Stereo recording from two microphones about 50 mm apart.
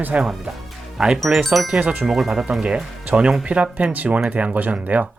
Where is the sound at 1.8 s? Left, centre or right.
Centre.